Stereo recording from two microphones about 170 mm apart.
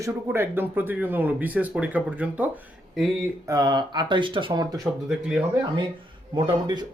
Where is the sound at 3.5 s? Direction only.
25° right (ahead or behind).